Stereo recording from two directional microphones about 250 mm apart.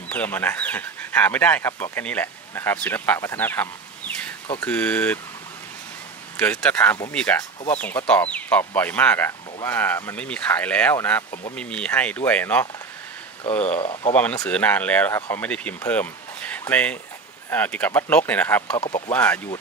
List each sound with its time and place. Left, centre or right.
0.1 s speech: centre
4.6 s speech: centre
6.3 s speech: centre
13.7 s speech: left
14.1 s speech: centre